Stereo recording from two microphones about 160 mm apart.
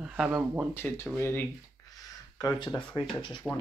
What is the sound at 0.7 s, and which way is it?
Speech, 15° left (ahead or behind).